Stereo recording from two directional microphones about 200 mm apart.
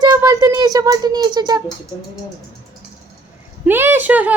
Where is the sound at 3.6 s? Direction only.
10° right (ahead or behind).